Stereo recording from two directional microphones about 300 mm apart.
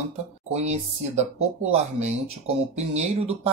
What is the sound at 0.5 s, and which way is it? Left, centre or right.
Speech, right.